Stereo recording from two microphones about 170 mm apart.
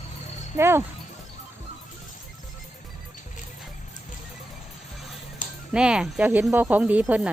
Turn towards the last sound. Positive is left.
turn(degrees=-10)  # may be behind; listen again after turning